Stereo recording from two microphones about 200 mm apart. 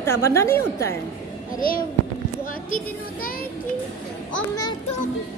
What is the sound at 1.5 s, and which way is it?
Speech, 45° left (ahead or behind).